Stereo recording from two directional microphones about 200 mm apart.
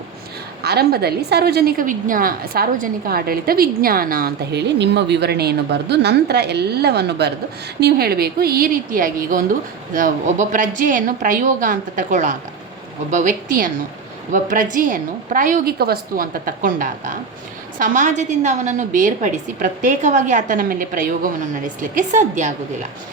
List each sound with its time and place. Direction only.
0.6 s a woman's voice: 55° right (ahead or behind); by 22.5 s 35° right (ahead or behind)